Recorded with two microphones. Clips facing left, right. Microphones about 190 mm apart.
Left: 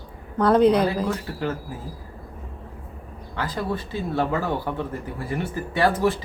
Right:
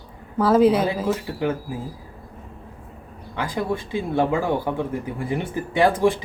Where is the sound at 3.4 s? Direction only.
10° right (ahead or behind).